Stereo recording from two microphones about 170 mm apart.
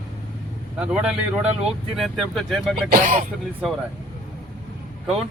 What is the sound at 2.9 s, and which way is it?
Speech, 45° right (ahead or behind).